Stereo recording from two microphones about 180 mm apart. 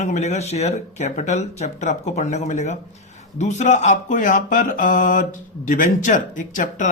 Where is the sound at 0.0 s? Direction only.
40° left (ahead or behind).